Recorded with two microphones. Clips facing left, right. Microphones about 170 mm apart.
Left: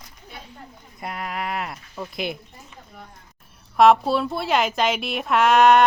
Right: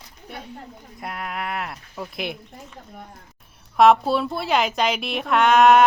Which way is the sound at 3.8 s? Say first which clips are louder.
Even; centre (ahead or behind).